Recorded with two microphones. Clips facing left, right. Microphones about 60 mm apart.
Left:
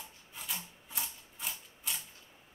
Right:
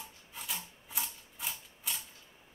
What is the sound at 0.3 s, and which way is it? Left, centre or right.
Typewriter, centre.